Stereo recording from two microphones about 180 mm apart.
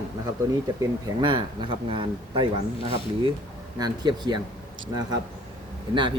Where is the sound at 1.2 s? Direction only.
25° right (ahead or behind).